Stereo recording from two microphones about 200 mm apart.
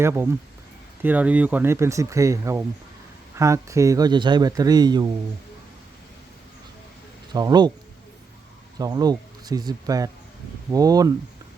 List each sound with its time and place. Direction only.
0.0 s speech: 10° right (ahead or behind)
7.3 s speech: 20° right (ahead or behind)
8.8 s speech: 20° right (ahead or behind)